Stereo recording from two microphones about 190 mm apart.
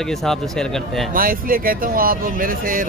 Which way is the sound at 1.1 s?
50° right (ahead or behind).